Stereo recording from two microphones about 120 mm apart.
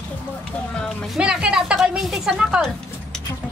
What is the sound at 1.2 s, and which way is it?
A woman's voice, 10° right (ahead or behind).